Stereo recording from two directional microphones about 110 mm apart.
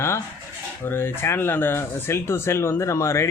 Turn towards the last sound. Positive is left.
turn(degrees=25)  # may be behind; listen again after turning